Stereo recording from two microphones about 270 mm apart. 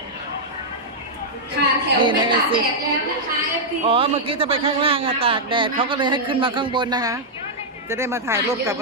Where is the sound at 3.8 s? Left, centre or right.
Centre.